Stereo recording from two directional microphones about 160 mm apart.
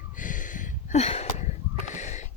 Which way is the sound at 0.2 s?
55° left (ahead or behind).